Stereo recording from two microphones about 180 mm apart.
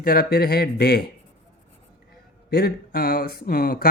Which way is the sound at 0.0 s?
55° left (ahead or behind).